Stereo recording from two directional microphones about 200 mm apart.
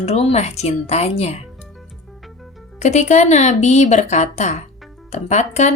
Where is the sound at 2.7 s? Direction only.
35° left (ahead or behind).